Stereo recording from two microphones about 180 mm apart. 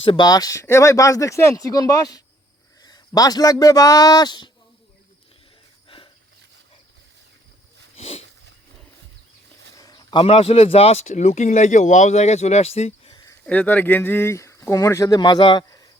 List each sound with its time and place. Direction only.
0.0 s speech: 25° left (ahead or behind)
7.9 s a sound: 35° left (ahead or behind)
9.7 s speech: 20° left (ahead or behind)
13.4 s speech: 10° left (ahead or behind)